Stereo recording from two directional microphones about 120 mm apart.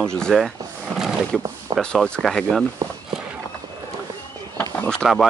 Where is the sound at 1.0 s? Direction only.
Centre (ahead or behind).